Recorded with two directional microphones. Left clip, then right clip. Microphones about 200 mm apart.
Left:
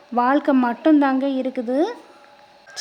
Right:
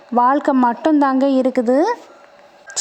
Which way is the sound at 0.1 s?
15° right (ahead or behind).